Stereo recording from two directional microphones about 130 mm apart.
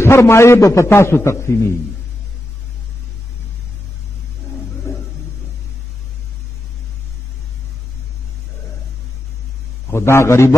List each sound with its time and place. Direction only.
0.0 s a man's voice: 20° left (ahead or behind)
4.9 s vehicle: 20° left (ahead or behind)
9.8 s a man's voice: 20° left (ahead or behind)